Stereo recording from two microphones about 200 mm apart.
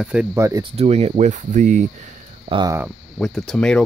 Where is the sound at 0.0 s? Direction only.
5° right (ahead or behind).